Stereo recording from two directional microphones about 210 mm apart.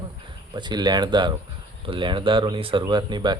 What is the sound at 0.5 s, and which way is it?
Speech, 20° right (ahead or behind).